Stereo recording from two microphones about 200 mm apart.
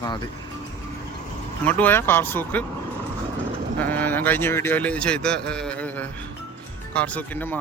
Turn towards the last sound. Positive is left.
turn(degrees=10)  # may be behind; listen again after turning